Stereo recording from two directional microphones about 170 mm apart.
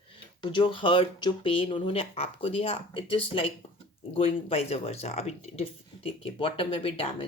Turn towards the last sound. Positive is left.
turn(degrees=35)  # may be behind; listen again after turning